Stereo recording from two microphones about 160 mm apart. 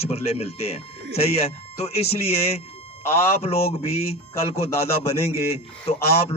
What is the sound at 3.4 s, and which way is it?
Speech, 40° left (ahead or behind).